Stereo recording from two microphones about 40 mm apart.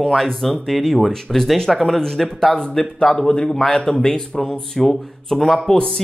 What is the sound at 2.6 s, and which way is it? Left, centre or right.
Speech, centre.